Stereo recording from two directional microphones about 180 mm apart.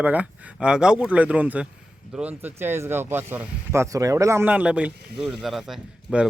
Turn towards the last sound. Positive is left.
turn(degrees=-5)  # may be behind; listen again after turning